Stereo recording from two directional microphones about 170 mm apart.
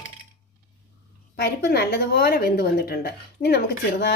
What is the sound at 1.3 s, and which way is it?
Speech, 70° left (ahead or behind).